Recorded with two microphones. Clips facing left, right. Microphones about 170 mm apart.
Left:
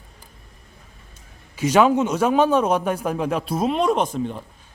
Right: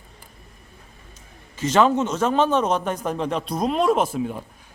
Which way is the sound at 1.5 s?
10° left (ahead or behind).